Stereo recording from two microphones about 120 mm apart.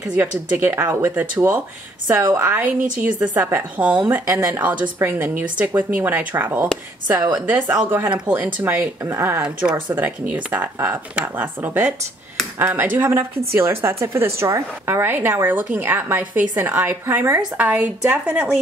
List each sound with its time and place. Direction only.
0.0 s speech: 10° right (ahead or behind)
4.3 s speech: 20° right (ahead or behind)
9.4 s a woman's voice: 5° right (ahead or behind)